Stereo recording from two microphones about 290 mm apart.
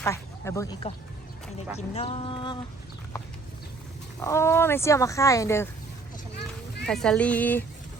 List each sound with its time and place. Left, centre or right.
0.0 s speech: centre
4.2 s speech: centre
6.8 s speech: centre